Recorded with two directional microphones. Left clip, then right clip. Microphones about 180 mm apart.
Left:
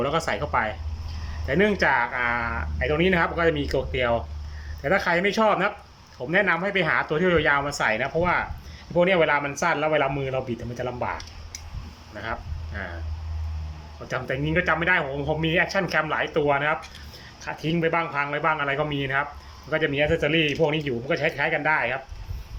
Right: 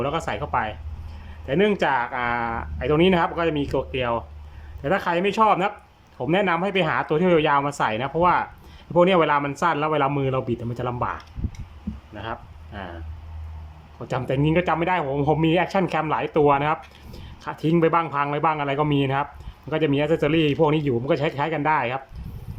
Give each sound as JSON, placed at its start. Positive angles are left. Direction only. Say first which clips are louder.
{"t": 0.0, "sound": "speech", "louder": "left 1 dB", "side_deg": -10}
{"t": 12.1, "sound": "speech", "louder": "left 1 dB", "side_deg": -10}
{"t": 14.1, "sound": "speech", "louder": "right 4 dB", "side_deg": -20}